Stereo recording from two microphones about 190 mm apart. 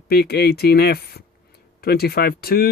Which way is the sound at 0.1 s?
55° left (ahead or behind).